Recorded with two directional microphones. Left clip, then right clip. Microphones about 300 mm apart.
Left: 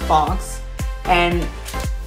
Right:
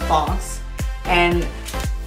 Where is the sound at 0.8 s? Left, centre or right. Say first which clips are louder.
Left 1 dB; centre.